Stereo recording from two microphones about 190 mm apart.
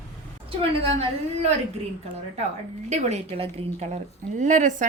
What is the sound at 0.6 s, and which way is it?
Speech, 30° right (ahead or behind).